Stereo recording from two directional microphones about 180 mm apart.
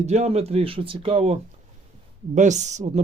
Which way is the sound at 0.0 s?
35° right (ahead or behind).